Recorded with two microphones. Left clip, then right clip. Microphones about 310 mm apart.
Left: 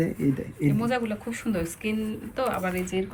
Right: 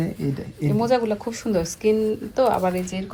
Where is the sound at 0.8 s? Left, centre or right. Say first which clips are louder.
Right 7 dB; centre.